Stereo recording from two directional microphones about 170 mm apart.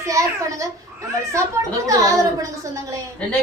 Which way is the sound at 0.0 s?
20° right (ahead or behind).